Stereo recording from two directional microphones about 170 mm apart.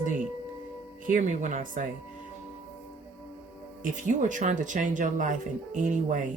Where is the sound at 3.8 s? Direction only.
50° right (ahead or behind).